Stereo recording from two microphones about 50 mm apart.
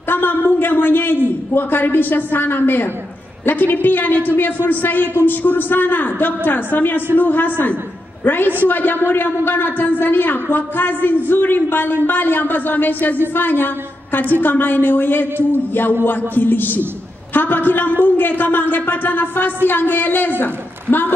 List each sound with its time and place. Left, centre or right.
0.1 s a man's voice: left